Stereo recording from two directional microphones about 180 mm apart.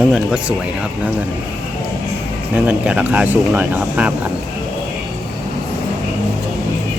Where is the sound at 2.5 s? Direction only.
5° right (ahead or behind).